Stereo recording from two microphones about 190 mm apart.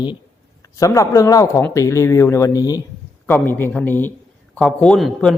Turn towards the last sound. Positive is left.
turn(degrees=0)  # may be behind; listen again after turning